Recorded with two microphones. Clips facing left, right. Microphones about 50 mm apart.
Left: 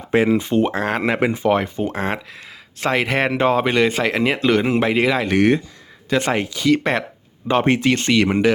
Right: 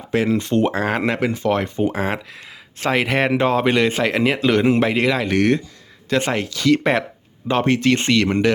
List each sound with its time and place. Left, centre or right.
0.1 s speech: centre
1.2 s speech: centre
6.7 s speech: centre